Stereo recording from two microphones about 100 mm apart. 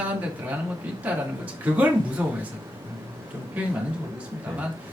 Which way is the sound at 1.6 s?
15° right (ahead or behind).